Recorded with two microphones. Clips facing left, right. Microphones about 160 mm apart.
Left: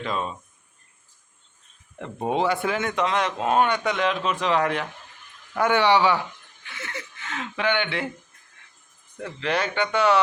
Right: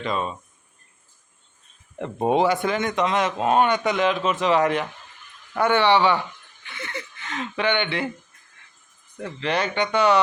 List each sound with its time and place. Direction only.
0.0 s speech: centre (ahead or behind)
2.0 s speech: 30° right (ahead or behind)
2.5 s speech: centre (ahead or behind)
5.5 s a man's voice: 10° left (ahead or behind)
9.2 s speech: centre (ahead or behind)